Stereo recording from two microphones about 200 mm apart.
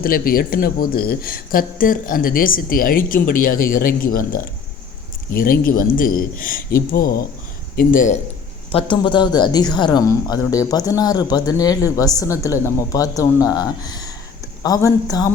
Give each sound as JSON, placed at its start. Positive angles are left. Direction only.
{"t": 0.0, "sound": "speech", "side_deg": 45}
{"t": 8.7, "sound": "speech", "side_deg": 25}